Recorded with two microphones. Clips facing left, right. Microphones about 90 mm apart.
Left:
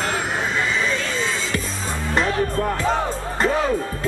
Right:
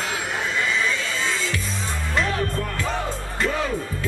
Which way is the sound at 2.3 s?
35° left (ahead or behind).